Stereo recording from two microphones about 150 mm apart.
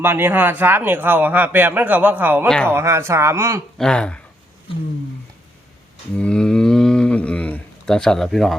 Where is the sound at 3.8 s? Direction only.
5° left (ahead or behind).